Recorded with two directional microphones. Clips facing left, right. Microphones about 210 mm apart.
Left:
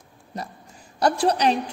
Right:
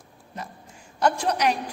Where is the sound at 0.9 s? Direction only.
35° left (ahead or behind).